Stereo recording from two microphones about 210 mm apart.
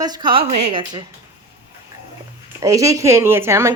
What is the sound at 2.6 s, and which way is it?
A woman's voice, 15° right (ahead or behind).